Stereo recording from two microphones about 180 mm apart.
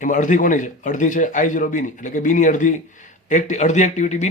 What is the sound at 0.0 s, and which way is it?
Speech, 45° left (ahead or behind).